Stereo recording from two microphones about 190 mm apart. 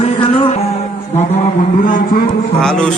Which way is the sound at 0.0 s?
30° left (ahead or behind).